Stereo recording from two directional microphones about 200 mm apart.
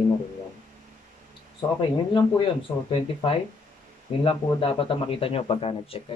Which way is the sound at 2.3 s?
25° left (ahead or behind).